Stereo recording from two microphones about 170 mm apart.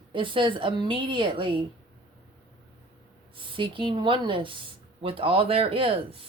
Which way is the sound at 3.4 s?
30° right (ahead or behind).